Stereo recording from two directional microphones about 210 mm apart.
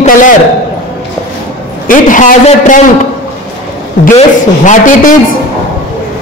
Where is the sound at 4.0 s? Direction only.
35° left (ahead or behind).